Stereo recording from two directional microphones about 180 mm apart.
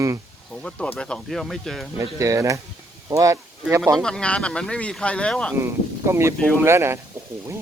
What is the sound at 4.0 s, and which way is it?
Speech, 5° left (ahead or behind).